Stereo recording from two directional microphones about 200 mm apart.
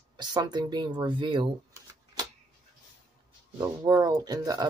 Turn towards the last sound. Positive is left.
turn(degrees=-20)  # may be behind; listen again after turning